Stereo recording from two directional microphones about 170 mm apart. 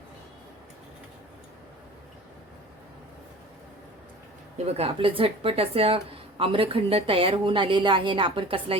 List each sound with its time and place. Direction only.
4.5 s speech: 35° right (ahead or behind)